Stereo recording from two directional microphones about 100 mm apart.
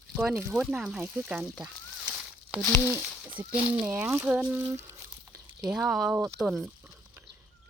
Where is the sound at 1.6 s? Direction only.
10° right (ahead or behind).